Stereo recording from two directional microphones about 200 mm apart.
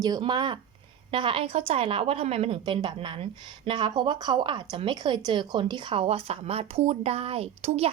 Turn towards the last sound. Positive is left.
turn(degrees=-30)  # may be behind; listen again after turning